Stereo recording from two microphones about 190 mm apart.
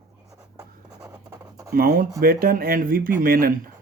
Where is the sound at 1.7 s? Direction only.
50° right (ahead or behind).